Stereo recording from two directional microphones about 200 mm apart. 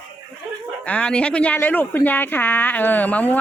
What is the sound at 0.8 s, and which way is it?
Speech, 5° left (ahead or behind).